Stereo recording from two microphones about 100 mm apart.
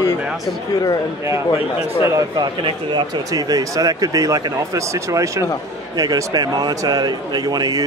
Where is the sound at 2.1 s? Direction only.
45° right (ahead or behind).